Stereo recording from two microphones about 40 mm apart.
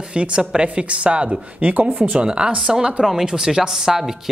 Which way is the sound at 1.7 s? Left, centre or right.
Right.